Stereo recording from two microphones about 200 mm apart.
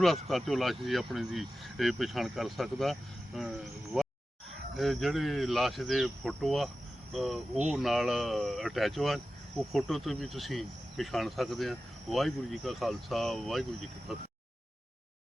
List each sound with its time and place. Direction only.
0.0 s speech: centre (ahead or behind)
4.8 s speech: centre (ahead or behind)